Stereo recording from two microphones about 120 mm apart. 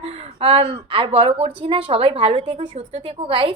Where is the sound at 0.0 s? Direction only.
50° right (ahead or behind).